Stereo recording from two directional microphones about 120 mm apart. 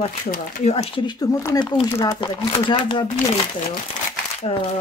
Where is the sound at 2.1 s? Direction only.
45° left (ahead or behind).